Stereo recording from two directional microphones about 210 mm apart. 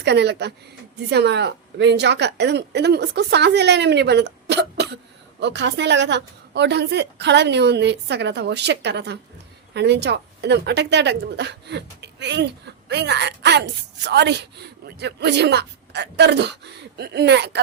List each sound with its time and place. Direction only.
0.0 s a woman's voice: 55° right (ahead or behind)